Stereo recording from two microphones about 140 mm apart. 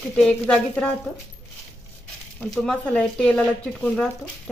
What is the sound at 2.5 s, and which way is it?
Speech, 5° left (ahead or behind).